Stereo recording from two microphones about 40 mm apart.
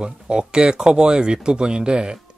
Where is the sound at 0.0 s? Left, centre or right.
Right.